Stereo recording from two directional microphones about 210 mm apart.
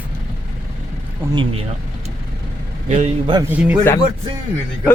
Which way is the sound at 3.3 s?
10° right (ahead or behind).